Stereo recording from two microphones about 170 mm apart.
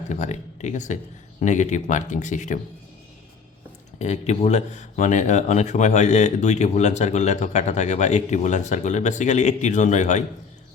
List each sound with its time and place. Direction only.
0.1 s speech: 45° left (ahead or behind)
3.9 s speech: 40° left (ahead or behind)